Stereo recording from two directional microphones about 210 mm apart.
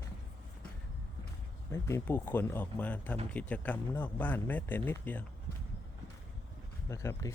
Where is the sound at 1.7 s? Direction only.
10° left (ahead or behind).